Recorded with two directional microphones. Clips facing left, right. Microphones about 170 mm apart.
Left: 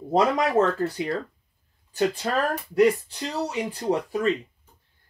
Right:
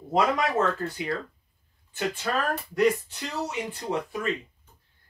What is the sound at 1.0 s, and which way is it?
Speech, 35° left (ahead or behind).